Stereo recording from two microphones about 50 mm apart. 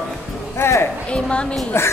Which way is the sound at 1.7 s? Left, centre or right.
Left.